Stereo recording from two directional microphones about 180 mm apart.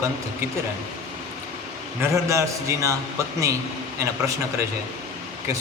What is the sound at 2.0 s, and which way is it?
Speech, 15° right (ahead or behind).